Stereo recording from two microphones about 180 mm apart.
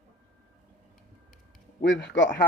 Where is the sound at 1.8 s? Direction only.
80° left.